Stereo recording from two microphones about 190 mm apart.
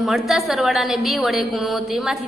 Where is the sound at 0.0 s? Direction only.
Centre (ahead or behind).